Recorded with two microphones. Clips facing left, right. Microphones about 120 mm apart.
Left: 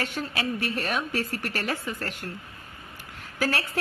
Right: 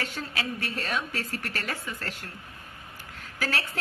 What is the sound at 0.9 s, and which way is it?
A woman's voice, 15° left (ahead or behind).